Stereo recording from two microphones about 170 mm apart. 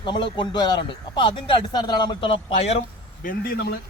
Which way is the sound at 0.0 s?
30° left (ahead or behind).